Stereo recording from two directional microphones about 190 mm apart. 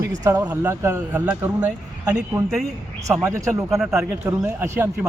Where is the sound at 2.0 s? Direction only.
20° right (ahead or behind).